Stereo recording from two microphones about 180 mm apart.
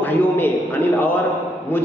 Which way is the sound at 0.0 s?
10° left (ahead or behind).